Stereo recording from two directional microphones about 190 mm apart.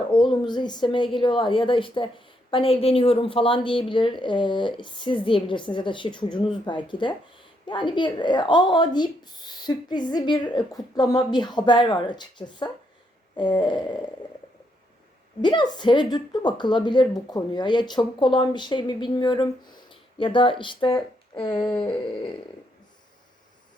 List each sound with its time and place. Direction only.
0.1 s speech: 25° left (ahead or behind)
15.4 s speech: 25° left (ahead or behind)